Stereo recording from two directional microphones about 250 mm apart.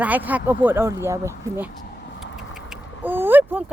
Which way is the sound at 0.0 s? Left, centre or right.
Centre.